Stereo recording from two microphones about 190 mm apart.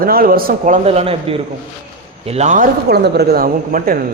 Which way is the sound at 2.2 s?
35° right (ahead or behind).